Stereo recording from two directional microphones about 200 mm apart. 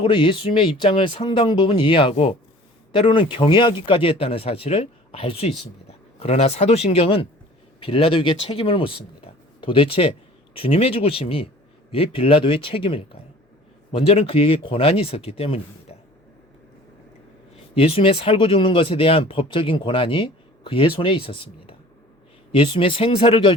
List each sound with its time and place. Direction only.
0.0 s speech: 25° left (ahead or behind)
17.7 s speech: 30° left (ahead or behind)